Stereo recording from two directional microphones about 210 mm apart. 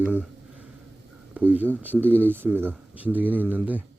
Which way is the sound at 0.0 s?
5° right (ahead or behind).